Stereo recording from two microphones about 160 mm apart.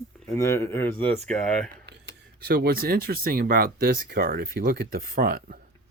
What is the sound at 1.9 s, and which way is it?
Speech, 85° right.